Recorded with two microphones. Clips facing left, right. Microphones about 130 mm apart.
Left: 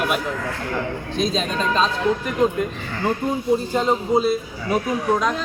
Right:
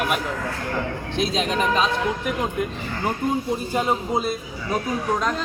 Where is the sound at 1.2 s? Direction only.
15° right (ahead or behind).